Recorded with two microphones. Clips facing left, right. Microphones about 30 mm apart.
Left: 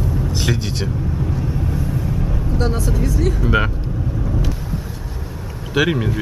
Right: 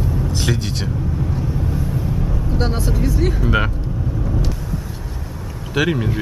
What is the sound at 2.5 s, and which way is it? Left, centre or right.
Speech, right.